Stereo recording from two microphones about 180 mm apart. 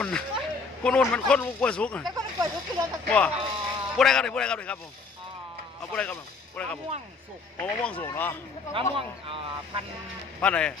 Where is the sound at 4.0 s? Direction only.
5° left (ahead or behind).